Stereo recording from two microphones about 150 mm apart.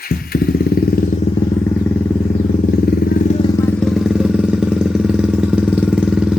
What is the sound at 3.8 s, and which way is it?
Vehicle, centre (ahead or behind).